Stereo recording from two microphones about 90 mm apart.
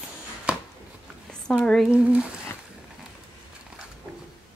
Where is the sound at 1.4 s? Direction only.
10° left (ahead or behind).